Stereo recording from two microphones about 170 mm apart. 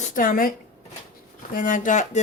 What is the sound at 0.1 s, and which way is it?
Speech, 55° left (ahead or behind).